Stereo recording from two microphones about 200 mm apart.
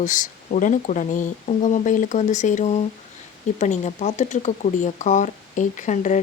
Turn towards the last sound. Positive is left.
turn(degrees=35)  # may be behind; listen again after turning